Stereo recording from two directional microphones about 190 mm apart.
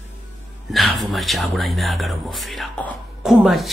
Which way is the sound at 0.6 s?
Centre (ahead or behind).